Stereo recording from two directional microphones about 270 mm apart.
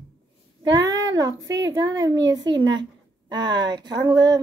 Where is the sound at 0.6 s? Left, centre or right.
Centre.